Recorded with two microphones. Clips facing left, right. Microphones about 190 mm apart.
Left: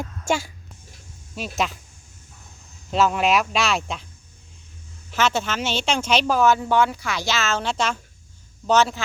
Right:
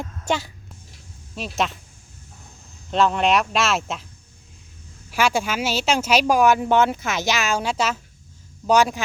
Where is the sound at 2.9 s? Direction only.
5° left (ahead or behind).